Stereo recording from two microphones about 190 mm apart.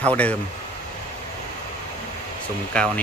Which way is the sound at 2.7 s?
5° left (ahead or behind).